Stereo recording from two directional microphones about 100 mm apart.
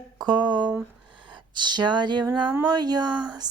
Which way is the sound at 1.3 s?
50° right (ahead or behind).